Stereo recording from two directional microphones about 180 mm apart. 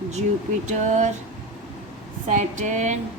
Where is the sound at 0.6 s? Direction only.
40° right (ahead or behind).